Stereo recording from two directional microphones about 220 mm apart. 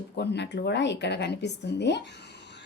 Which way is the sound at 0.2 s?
50° left (ahead or behind).